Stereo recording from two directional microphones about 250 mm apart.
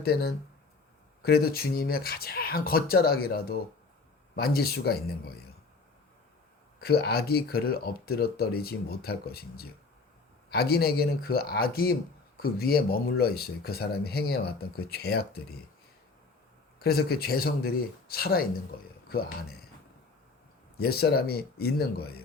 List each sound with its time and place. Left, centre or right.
0.0 s speech: left
6.7 s speech: left
16.8 s speech: left
20.7 s speech: left